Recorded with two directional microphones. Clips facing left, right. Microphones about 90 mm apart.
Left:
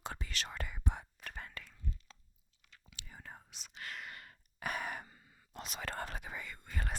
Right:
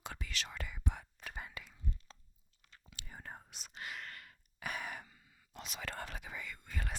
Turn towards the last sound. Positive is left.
turn(degrees=40)  # may be behind; listen again after turning